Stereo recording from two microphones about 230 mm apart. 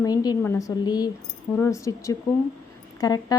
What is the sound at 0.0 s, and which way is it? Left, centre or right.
A woman's voice, centre.